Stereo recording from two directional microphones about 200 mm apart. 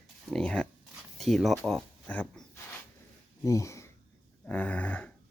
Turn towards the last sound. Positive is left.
turn(degrees=5)  # may be behind; listen again after turning